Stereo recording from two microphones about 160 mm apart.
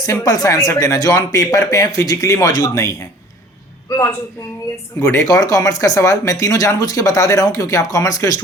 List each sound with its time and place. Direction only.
0.0 s a man's voice: 20° left (ahead or behind)
5.1 s speech: 20° left (ahead or behind)